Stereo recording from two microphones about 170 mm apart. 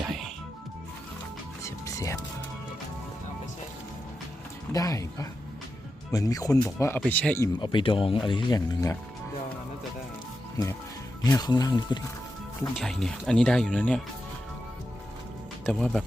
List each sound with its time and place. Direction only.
1.6 s music: 15° left (ahead or behind)
4.7 s speech: 20° left (ahead or behind)
7.6 s speech: 30° left (ahead or behind)
11.2 s speech: 25° left (ahead or behind)
12.7 s speech: centre (ahead or behind)
15.6 s speech: centre (ahead or behind)